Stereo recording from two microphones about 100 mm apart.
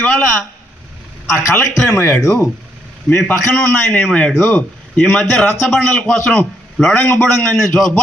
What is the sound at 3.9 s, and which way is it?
A man's voice, 10° left (ahead or behind).